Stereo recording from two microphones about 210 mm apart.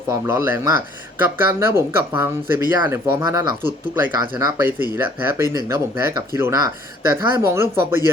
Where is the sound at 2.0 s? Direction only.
10° right (ahead or behind).